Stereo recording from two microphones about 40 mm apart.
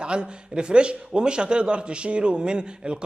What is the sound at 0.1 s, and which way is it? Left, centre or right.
A man's voice, right.